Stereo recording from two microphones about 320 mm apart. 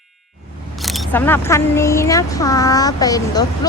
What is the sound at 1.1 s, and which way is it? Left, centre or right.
A woman's voice, centre.